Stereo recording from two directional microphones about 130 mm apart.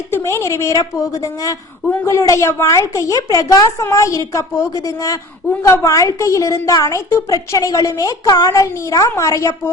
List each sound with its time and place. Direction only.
0.1 s a woman's voice: 20° left (ahead or behind)
5.6 s a woman's voice: 25° left (ahead or behind)